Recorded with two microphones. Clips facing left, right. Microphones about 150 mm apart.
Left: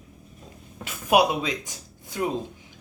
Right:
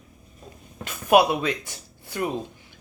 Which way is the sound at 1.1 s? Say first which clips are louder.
Right 2 dB; 10° left (ahead or behind).